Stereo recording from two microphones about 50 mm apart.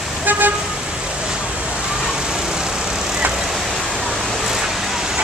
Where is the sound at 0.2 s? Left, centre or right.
Right.